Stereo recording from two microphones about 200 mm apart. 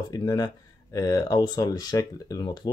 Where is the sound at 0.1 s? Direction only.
20° left (ahead or behind).